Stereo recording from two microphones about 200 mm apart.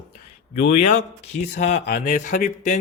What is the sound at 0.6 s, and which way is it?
Speech, 50° left (ahead or behind).